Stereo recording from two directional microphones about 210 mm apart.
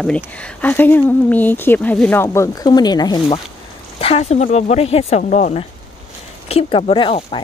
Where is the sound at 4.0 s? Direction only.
30° left (ahead or behind).